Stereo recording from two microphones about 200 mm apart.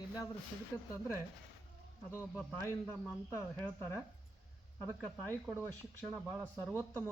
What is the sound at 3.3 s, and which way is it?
Speech, 10° left (ahead or behind).